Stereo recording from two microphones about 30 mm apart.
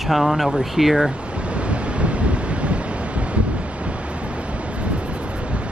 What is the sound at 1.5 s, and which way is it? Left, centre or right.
Waves, right.